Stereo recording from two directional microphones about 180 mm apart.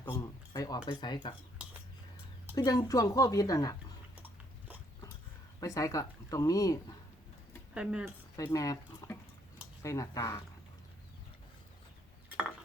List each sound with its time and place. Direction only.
0.0 s cutlery: 15° left (ahead or behind)
0.9 s speech: 25° left (ahead or behind)
1.6 s cutlery: 5° right (ahead or behind)
2.6 s speech: 20° left (ahead or behind)
5.5 s speech: 20° left (ahead or behind)
7.7 s speech: 5° right (ahead or behind)
8.4 s speech: 20° left (ahead or behind)